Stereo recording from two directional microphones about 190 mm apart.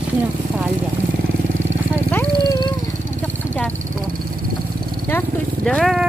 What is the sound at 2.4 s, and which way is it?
Wild animals, 20° left (ahead or behind).